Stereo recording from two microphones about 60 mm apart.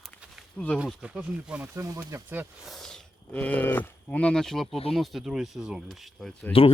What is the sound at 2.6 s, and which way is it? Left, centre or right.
Speech, centre.